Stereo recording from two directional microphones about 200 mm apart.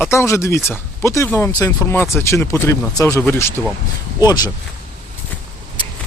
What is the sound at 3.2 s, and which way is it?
Speech, 5° left (ahead or behind).